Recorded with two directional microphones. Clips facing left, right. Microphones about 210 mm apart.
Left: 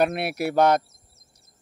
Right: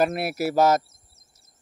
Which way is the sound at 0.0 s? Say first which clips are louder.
Even; centre (ahead or behind).